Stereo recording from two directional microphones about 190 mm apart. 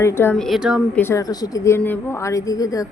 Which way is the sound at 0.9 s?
15° left (ahead or behind).